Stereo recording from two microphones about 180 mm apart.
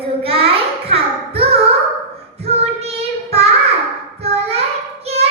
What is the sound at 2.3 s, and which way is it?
Child singing, 35° right (ahead or behind).